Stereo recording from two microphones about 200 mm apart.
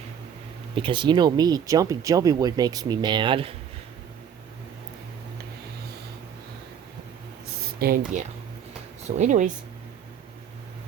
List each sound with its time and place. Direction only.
0.8 s speech: 25° right (ahead or behind)
7.4 s a sound: 50° right (ahead or behind)
9.1 s speech: 35° right (ahead or behind)